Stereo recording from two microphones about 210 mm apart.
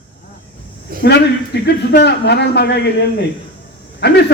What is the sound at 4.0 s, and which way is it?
Speech, 50° left (ahead or behind).